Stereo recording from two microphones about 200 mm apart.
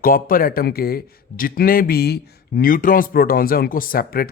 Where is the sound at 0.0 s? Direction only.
45° left (ahead or behind).